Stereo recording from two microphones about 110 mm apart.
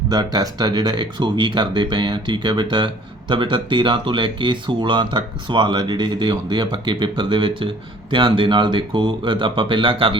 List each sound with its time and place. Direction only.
0.1 s speech: 35° right (ahead or behind); by 10.2 s 55° right (ahead or behind)